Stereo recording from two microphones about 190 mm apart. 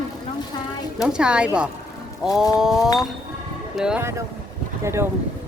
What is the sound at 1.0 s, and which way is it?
Speech, 5° right (ahead or behind).